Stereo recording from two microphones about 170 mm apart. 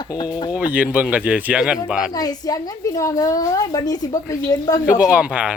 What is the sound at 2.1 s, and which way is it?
Speech, 25° left (ahead or behind).